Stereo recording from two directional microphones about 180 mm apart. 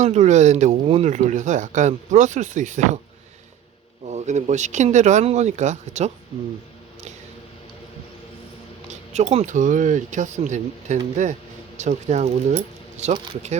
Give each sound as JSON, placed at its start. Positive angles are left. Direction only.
{"t": 0.0, "sound": "speech", "side_deg": -40}
{"t": 4.0, "sound": "speech", "side_deg": -40}
{"t": 8.9, "sound": "speech", "side_deg": -40}